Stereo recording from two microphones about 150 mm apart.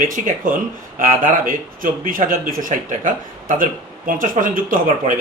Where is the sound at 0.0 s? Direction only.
65° right (ahead or behind).